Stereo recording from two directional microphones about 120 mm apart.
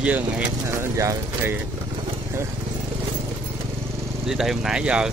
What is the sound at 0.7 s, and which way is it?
Speech, 25° right (ahead or behind).